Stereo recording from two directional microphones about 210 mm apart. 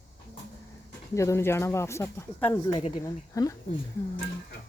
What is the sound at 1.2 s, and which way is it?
Speech, 15° left (ahead or behind).